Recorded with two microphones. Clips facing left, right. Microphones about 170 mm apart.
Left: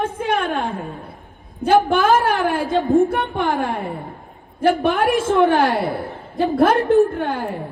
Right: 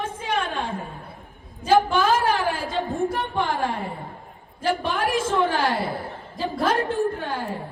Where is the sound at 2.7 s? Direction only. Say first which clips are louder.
Left 13 dB; 20° left (ahead or behind).